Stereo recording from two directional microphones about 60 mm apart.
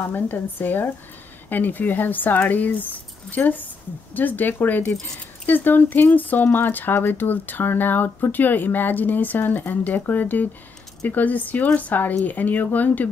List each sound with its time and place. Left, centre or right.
0.1 s speech: left